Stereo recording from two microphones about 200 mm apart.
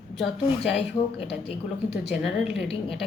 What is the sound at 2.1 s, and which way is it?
Speech, centre (ahead or behind).